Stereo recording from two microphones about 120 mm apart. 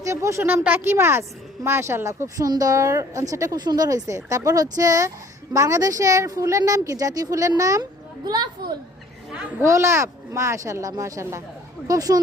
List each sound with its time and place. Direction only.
0.0 s speech: 25° right (ahead or behind)
9.6 s speech: 25° right (ahead or behind)